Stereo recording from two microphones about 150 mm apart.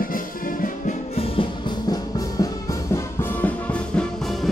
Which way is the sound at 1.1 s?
40° left (ahead or behind).